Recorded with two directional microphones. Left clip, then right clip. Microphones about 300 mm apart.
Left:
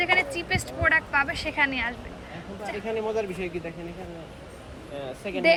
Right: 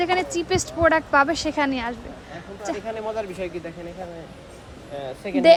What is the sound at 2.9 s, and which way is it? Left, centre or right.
Speech, right.